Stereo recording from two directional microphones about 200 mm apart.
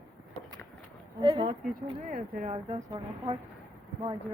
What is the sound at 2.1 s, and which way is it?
Speech, 40° right (ahead or behind).